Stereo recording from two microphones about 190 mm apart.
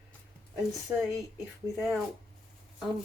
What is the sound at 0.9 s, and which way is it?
Speech, 10° right (ahead or behind).